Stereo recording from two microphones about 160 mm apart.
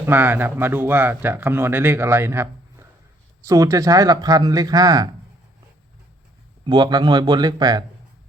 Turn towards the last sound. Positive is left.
turn(degrees=-25)  # may be behind; listen again after turning